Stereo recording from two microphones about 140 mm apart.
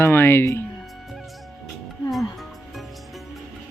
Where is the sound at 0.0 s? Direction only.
15° left (ahead or behind).